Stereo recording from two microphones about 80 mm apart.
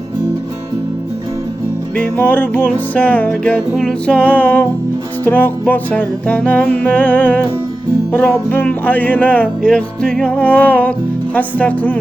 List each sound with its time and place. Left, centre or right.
2.0 s music: left
9.6 s music: centre